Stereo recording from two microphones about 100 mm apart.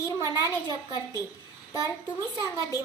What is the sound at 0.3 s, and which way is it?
Speech, 35° left (ahead or behind).